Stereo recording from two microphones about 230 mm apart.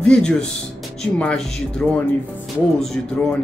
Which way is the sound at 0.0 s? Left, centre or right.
Centre.